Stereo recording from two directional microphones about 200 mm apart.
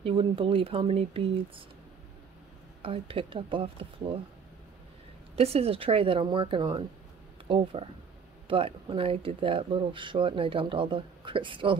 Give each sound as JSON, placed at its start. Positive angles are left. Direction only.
{"t": 0.0, "sound": "speech", "side_deg": -25}
{"t": 2.8, "sound": "speech", "side_deg": -25}
{"t": 5.3, "sound": "speech", "side_deg": -30}